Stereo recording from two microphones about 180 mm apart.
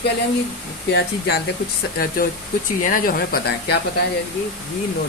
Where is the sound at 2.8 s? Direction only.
50° left (ahead or behind).